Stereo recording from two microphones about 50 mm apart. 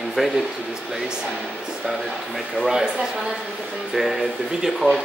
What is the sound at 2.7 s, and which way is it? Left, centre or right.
Speech, centre.